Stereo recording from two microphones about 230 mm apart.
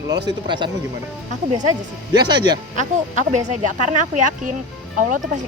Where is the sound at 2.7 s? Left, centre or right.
Right.